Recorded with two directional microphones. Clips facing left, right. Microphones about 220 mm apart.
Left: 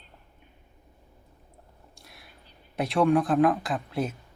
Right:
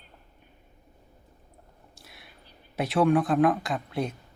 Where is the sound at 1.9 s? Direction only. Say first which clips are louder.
Right 1 dB; centre (ahead or behind).